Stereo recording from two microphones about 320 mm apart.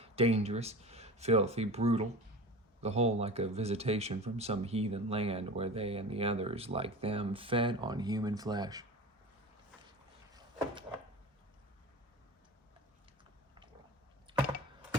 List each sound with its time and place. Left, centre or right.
0.0 s speech: centre